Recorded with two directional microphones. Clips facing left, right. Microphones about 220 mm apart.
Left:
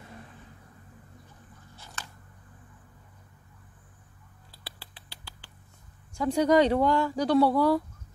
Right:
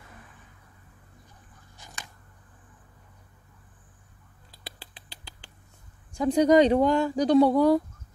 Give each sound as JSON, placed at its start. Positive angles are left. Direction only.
{"t": 1.8, "sound": "a sound", "side_deg": -15}
{"t": 4.5, "sound": "rodents", "side_deg": -20}
{"t": 6.1, "sound": "speech", "side_deg": -20}